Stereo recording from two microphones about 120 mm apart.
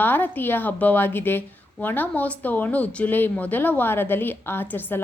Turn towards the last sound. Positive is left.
turn(degrees=15)  # may be behind; listen again after turning